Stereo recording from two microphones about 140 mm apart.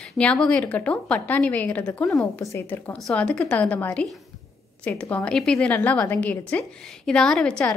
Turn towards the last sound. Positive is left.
turn(degrees=5)  # may be behind; listen again after turning